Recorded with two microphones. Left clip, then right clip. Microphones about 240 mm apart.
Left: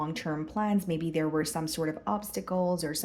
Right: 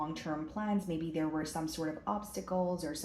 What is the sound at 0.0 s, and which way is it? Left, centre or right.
Speech, left.